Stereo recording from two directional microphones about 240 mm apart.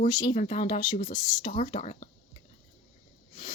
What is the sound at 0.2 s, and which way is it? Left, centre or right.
Speech, left.